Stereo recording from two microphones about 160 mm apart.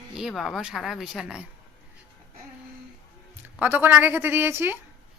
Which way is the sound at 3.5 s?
10° right (ahead or behind).